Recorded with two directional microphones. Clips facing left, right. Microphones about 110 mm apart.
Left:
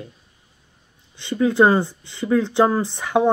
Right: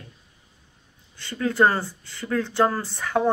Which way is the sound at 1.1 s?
15° left (ahead or behind).